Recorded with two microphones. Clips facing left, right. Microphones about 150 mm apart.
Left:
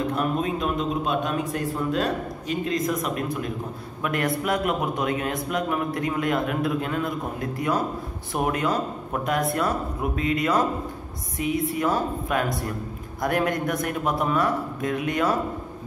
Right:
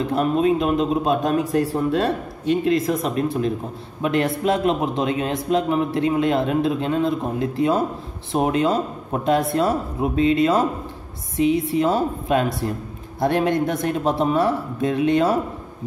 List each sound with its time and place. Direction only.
0.1 s a man's voice: 30° right (ahead or behind)